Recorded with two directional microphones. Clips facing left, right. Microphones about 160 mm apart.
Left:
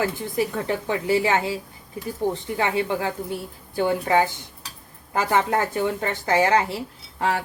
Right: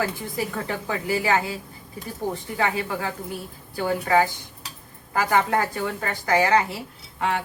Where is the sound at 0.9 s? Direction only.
25° left (ahead or behind).